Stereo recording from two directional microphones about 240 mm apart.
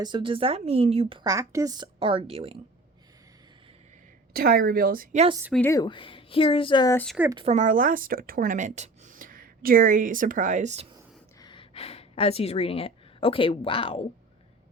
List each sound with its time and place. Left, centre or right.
0.0 s speech: centre
4.4 s a woman's voice: right
5.3 s speech: centre
5.5 s speech: centre
7.2 s speech: centre
7.4 s speech: right
11.3 s speech: centre